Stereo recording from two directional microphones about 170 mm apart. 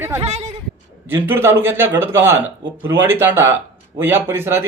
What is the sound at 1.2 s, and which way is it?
Speech, 10° right (ahead or behind).